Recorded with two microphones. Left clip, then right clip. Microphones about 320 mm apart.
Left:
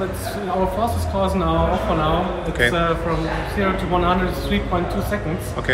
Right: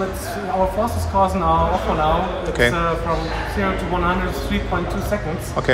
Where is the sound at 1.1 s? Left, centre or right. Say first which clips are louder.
Right 5 dB; centre.